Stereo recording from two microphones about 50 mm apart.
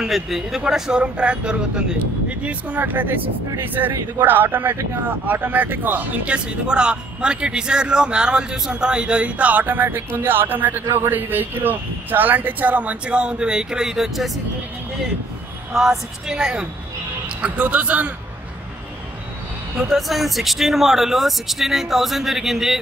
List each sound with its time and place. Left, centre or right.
0.0 s speech: centre
1.0 s a man's voice: right
2.8 s speech: right
6.2 s a man's voice: right; by 14.4 s centre
15.7 s speech: centre
17.4 s speech: right
19.9 s speech: centre